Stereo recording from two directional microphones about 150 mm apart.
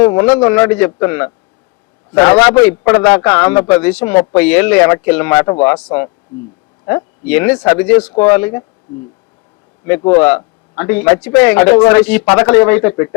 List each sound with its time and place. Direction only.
0.0 s a man's voice: 15° left (ahead or behind)
10.1 s a man's voice: 15° left (ahead or behind)